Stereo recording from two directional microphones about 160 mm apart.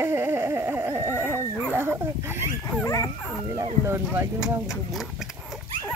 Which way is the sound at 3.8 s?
15° right (ahead or behind).